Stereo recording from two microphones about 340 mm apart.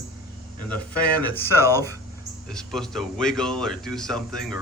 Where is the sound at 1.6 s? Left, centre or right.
Centre.